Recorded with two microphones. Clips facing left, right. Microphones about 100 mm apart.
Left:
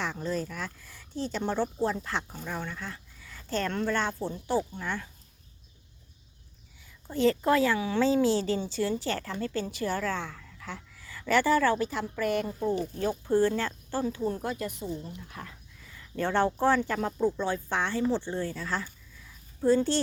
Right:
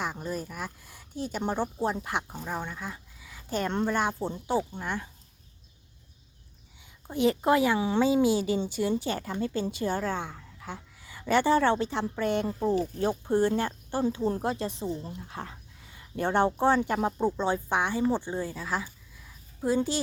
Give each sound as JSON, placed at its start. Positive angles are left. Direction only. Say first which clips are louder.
{"t": 0.0, "sound": "speech", "louder": "left 1 dB", "side_deg": -15}
{"t": 6.8, "sound": "a woman's voice", "louder": "even", "side_deg": -15}